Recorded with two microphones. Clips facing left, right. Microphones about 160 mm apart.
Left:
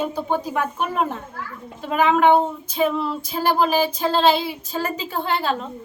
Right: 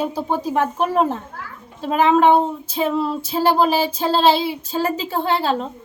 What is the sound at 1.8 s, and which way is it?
Child singing, 30° right (ahead or behind).